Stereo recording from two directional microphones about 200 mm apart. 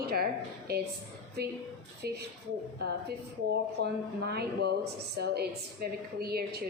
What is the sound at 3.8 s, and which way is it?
A woman's voice, 50° right (ahead or behind).